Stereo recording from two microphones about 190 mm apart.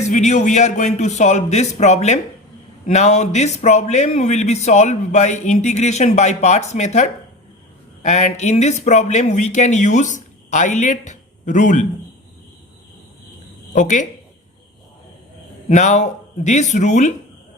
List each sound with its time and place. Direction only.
0.1 s speech: 40° left (ahead or behind)
13.7 s speech: 40° left (ahead or behind)
15.7 s speech: 40° left (ahead or behind)